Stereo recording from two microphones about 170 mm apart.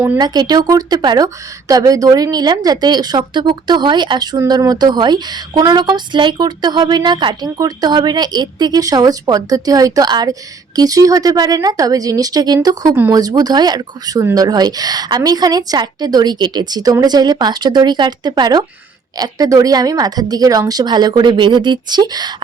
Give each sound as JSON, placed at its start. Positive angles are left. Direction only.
{"t": 0.2, "sound": "speech", "side_deg": -25}